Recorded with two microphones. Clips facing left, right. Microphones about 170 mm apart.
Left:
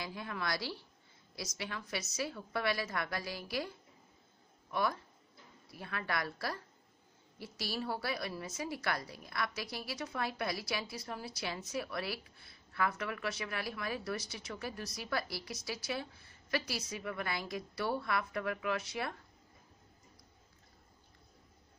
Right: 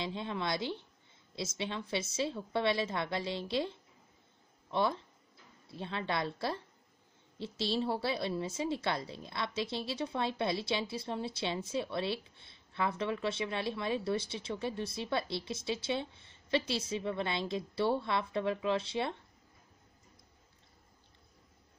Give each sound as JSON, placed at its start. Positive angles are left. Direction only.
{"t": 0.0, "sound": "a woman's voice", "side_deg": -25}